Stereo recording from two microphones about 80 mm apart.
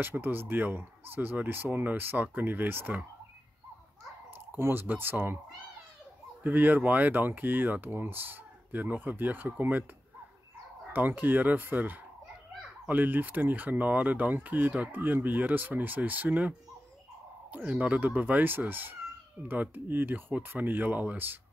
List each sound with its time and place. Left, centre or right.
0.0 s speech: right
4.6 s speech: right
6.4 s speech: right
10.9 s speech: right